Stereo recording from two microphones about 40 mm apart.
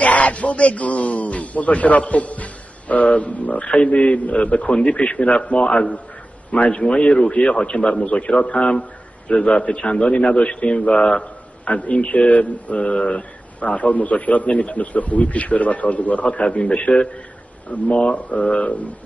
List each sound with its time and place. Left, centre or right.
0.0 s speech: left
6.5 s speech: left
6.8 s a man's voice: left